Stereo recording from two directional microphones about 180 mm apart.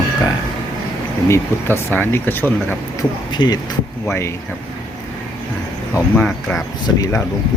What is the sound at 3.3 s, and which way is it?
Speech, 25° left (ahead or behind).